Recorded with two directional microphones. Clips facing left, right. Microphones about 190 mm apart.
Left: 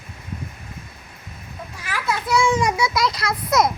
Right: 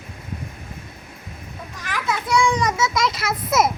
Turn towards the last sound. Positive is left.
turn(degrees=-5)  # may be behind; listen again after turning